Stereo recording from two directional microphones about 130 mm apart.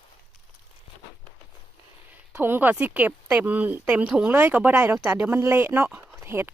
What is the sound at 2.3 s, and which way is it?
Speech, 15° right (ahead or behind).